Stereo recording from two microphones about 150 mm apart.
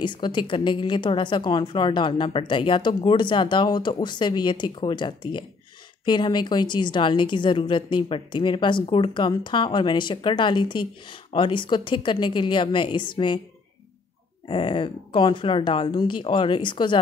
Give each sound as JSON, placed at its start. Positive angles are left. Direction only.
{"t": 0.0, "sound": "a woman's voice", "side_deg": 30}
{"t": 14.5, "sound": "a woman's voice", "side_deg": 35}